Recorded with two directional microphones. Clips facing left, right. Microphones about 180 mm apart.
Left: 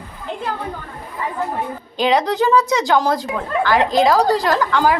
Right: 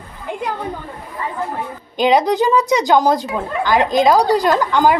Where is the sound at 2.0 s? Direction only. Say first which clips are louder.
Right 3 dB; 15° right (ahead or behind).